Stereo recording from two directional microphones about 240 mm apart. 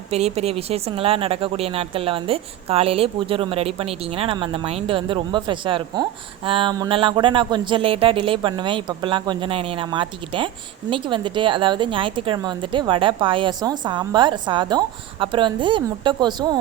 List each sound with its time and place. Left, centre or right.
0.1 s speech: right